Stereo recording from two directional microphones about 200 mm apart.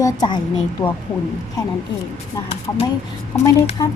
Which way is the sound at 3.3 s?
5° left (ahead or behind).